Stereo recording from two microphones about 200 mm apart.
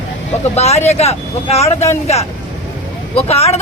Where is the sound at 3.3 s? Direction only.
30° left (ahead or behind).